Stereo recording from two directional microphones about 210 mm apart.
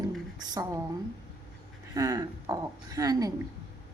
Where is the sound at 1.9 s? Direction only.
20° right (ahead or behind).